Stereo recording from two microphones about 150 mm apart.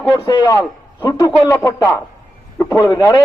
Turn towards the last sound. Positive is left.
turn(degrees=25)  # may be behind; listen again after turning